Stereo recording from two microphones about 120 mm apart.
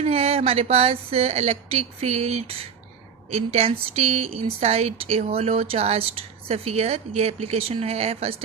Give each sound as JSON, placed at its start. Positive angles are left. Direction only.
{"t": 0.0, "sound": "speech", "side_deg": -55}